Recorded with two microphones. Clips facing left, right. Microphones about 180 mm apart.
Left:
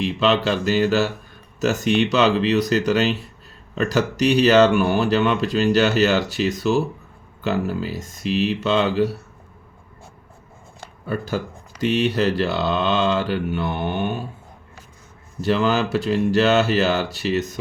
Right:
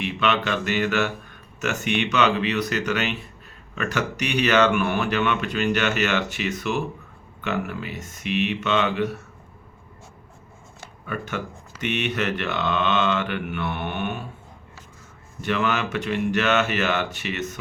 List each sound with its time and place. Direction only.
0.0 s speech: 35° left (ahead or behind)
11.0 s speech: 35° left (ahead or behind)
15.4 s speech: 35° left (ahead or behind)